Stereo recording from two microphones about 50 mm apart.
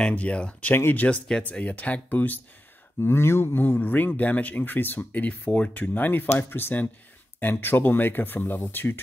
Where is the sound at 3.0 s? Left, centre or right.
Left.